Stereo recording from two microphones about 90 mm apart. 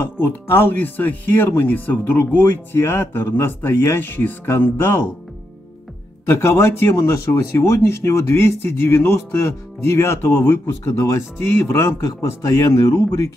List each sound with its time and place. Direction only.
0.0 s speech: 25° left (ahead or behind)
6.2 s speech: 30° left (ahead or behind)